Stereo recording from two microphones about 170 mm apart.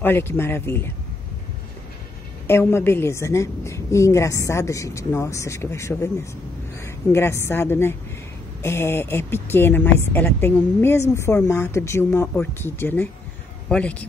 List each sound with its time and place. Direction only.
0.0 s speech: 15° left (ahead or behind)
2.4 s speech: 15° left (ahead or behind)